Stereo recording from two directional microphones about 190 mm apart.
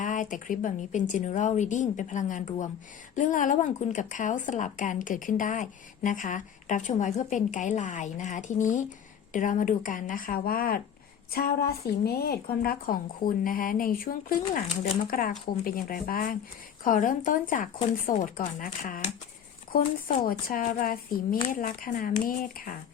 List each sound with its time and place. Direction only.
0.0 s a woman's voice: 45° left (ahead or behind)